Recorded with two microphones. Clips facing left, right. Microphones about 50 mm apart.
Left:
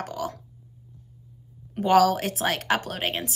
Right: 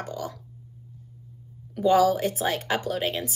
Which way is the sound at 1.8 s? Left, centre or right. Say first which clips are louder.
Left 1 dB; left.